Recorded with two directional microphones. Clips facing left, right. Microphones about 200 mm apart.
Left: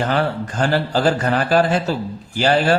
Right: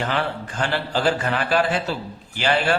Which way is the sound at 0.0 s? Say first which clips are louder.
Left 5 dB; 40° left (ahead or behind).